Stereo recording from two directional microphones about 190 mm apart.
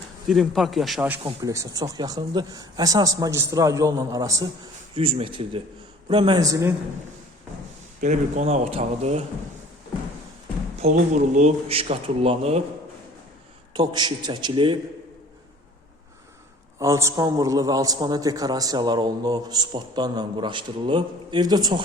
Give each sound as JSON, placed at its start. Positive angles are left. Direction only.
{"t": 0.3, "sound": "speech", "side_deg": 0}
{"t": 1.2, "sound": "a man's voice", "side_deg": -20}
{"t": 4.9, "sound": "a man's voice", "side_deg": -30}
{"t": 8.0, "sound": "speech", "side_deg": -40}
{"t": 10.8, "sound": "speech", "side_deg": -40}
{"t": 13.7, "sound": "a man's voice", "side_deg": -20}
{"t": 16.8, "sound": "a man's voice", "side_deg": -15}